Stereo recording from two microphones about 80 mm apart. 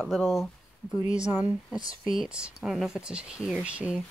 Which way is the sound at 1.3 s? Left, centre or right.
Right.